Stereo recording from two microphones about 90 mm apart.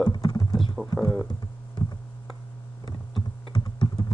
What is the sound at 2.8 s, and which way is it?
Computer keyboard, 50° left (ahead or behind).